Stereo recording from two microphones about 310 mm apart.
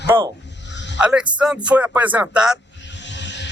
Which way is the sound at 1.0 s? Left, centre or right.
Centre.